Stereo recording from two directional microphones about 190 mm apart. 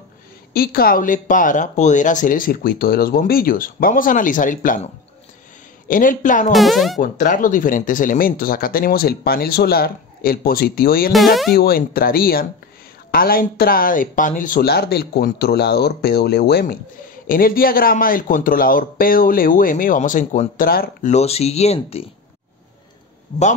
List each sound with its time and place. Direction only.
0.5 s speech: 50° left (ahead or behind)
5.9 s speech: 45° left (ahead or behind)
6.5 s speech: centre (ahead or behind)
7.0 s speech: 40° left (ahead or behind)
11.1 s speech: centre (ahead or behind)
11.5 s speech: 50° left (ahead or behind)
21.1 s speech: 35° left (ahead or behind)